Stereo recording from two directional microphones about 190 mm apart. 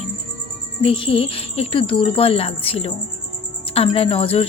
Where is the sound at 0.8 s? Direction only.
30° left (ahead or behind).